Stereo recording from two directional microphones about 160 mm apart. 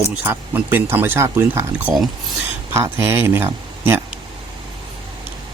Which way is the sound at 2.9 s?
15° right (ahead or behind).